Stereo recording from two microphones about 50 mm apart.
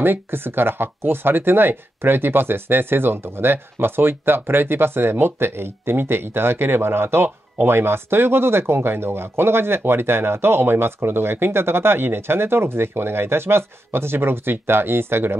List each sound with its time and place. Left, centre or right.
0.0 s speech: right